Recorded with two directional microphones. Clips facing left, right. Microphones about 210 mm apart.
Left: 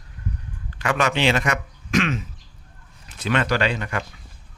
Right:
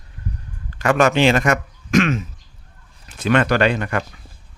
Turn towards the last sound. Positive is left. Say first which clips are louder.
# right 5 dB
turn(degrees=-55)  # may be behind; listen again after turning